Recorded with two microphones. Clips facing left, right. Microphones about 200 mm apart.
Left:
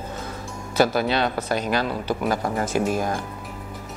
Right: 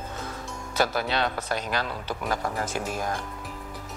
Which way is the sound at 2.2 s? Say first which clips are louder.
Left 4 dB; 25° left (ahead or behind).